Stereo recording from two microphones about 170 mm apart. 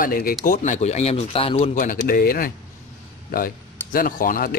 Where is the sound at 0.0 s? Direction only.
55° left (ahead or behind).